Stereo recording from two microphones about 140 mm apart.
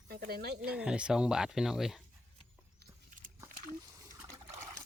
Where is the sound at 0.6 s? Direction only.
5° right (ahead or behind).